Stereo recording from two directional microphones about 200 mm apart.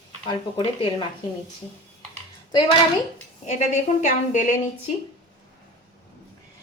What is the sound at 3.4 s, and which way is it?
A woman's voice, 35° left (ahead or behind).